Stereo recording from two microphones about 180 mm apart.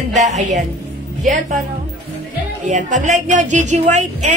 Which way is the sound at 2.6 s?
40° right (ahead or behind).